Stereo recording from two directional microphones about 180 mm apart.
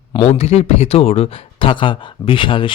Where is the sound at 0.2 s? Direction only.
35° left (ahead or behind).